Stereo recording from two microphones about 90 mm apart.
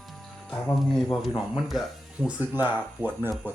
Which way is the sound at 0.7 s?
5° left (ahead or behind).